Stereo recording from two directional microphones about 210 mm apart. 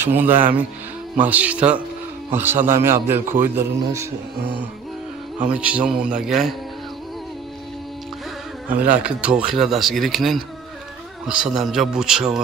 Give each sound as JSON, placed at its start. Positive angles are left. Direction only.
{"t": 0.0, "sound": "a man's voice", "side_deg": -10}
{"t": 4.4, "sound": "music", "side_deg": -55}
{"t": 5.4, "sound": "speech", "side_deg": -5}
{"t": 8.6, "sound": "speech", "side_deg": -5}